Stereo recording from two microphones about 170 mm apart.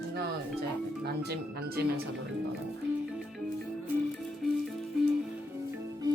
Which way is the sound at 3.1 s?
Centre (ahead or behind).